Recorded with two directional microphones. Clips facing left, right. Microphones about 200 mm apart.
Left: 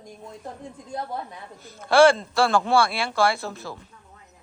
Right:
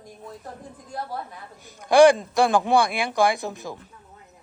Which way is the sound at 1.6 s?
15° right (ahead or behind).